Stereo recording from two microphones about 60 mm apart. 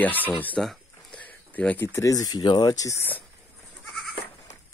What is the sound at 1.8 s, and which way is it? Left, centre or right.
Speech, left.